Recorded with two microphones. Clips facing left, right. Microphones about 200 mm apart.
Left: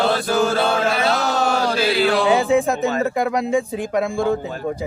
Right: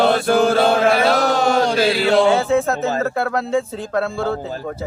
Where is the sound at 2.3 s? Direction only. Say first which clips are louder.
Even; 15° left (ahead or behind).